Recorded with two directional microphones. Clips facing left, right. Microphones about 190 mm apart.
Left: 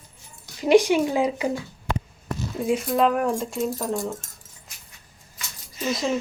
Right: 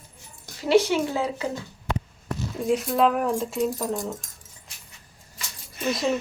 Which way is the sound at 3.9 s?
20° right (ahead or behind).